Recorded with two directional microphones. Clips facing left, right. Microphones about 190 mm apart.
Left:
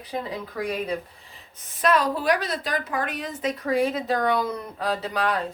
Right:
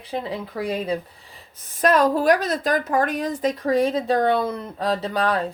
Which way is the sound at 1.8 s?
45° right (ahead or behind).